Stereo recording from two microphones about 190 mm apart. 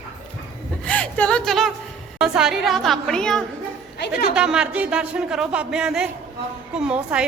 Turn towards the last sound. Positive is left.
turn(degrees=-5)  # may be behind; listen again after turning